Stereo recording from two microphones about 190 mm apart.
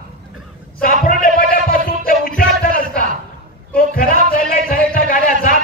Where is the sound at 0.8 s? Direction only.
50° left (ahead or behind).